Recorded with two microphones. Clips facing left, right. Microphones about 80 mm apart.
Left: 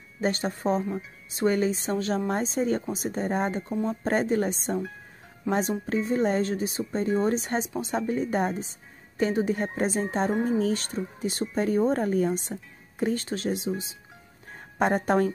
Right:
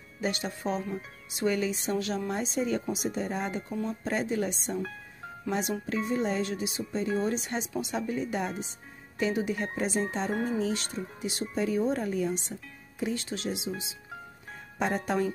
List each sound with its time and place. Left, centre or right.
0.2 s a woman's voice: left